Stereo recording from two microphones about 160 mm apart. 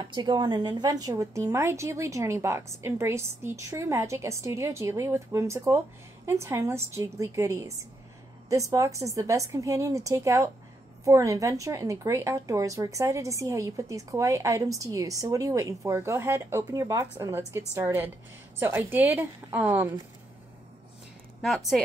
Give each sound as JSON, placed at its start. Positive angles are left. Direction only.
{"t": 0.0, "sound": "a woman's voice", "side_deg": -30}
{"t": 21.4, "sound": "speech", "side_deg": 0}